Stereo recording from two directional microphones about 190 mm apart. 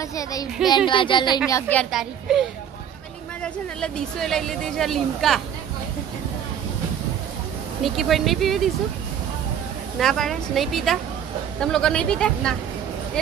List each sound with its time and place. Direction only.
0.0 s speech: 20° left (ahead or behind)
1.5 s a woman's voice: 5° left (ahead or behind)
3.4 s a woman's voice: 5° left (ahead or behind)
7.8 s a woman's voice: centre (ahead or behind)
9.9 s a woman's voice: centre (ahead or behind)